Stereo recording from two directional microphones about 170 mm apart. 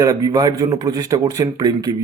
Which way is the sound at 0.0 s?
20° right (ahead or behind).